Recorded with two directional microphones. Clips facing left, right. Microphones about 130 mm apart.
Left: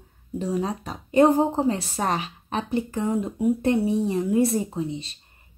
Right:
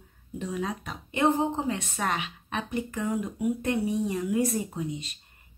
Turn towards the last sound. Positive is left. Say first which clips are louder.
# left 4 dB
turn(degrees=30)  # may be behind; listen again after turning